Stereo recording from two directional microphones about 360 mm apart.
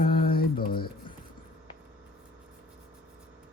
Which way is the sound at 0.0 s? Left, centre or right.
Left.